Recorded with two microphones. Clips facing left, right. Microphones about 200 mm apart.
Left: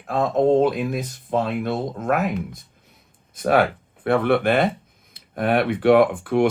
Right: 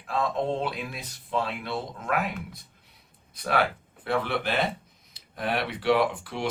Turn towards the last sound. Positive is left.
turn(degrees=55)  # may be behind; listen again after turning